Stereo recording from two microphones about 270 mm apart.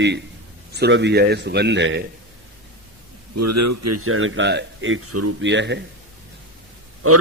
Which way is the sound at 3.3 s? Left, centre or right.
Right.